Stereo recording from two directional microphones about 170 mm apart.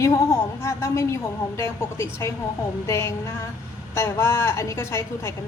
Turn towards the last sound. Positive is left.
turn(degrees=15)  # may be behind; listen again after turning